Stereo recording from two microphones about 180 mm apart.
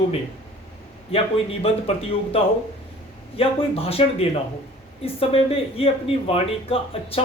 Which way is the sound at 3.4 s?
30° left (ahead or behind).